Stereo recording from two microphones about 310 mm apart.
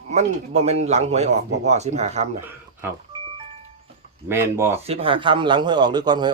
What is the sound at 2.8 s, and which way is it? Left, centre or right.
Music, centre.